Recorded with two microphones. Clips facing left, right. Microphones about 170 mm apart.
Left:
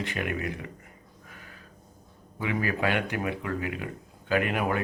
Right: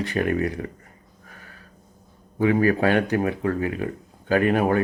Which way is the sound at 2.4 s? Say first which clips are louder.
Right 9 dB; 40° right (ahead or behind).